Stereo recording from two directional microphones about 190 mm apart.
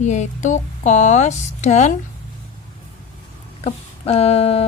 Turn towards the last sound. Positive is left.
turn(degrees=30)  # may be behind; listen again after turning